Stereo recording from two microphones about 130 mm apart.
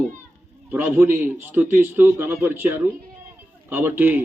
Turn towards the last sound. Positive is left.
turn(degrees=-15)  # may be behind; listen again after turning